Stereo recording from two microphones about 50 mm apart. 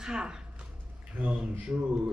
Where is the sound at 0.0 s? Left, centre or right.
Centre.